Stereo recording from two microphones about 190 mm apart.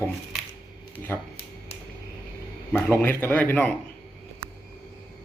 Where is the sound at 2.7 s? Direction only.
10° left (ahead or behind).